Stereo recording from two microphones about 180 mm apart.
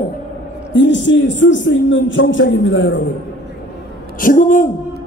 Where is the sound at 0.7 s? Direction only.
85° left.